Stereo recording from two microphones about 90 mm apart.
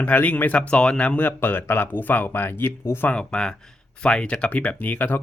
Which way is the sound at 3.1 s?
10° left (ahead or behind).